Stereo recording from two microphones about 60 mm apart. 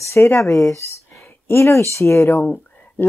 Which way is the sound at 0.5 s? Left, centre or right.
Left.